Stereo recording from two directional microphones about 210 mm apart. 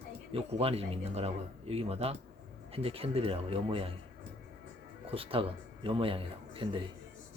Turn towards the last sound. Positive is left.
turn(degrees=-25)  # may be behind; listen again after turning